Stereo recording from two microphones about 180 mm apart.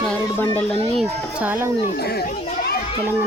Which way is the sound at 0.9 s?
10° right (ahead or behind).